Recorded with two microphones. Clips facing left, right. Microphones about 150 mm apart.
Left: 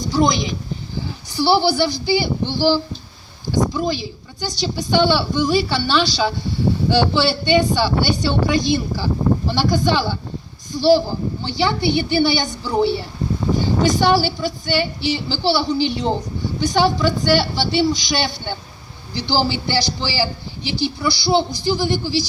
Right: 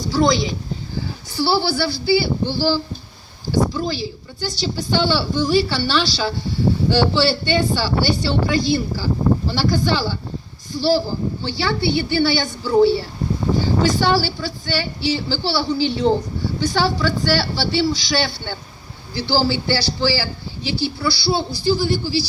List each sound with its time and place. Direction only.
0.1 s a woman's voice: 15° left (ahead or behind)
10.7 s a sound: 15° left (ahead or behind)
11.5 s a man's voice: 15° left (ahead or behind)